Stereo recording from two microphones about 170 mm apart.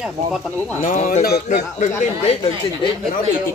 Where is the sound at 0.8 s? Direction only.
50° left (ahead or behind).